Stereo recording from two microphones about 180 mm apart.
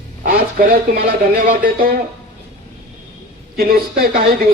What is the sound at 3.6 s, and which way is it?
Speech, 55° right (ahead or behind).